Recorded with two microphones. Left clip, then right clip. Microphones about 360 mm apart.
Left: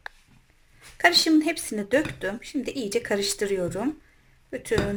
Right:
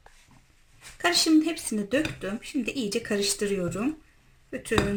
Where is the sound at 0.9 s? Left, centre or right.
Left.